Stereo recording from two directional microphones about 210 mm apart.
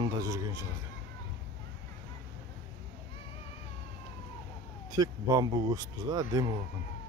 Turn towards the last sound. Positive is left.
turn(degrees=-15)  # may be behind; listen again after turning